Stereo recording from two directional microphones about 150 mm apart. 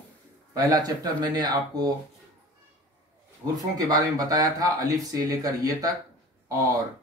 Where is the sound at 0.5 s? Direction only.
25° right (ahead or behind).